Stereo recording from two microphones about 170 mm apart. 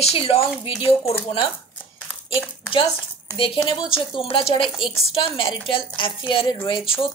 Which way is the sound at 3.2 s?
30° left (ahead or behind).